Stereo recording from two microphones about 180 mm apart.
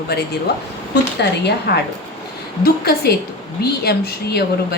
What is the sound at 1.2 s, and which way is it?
Speech, 65° left (ahead or behind).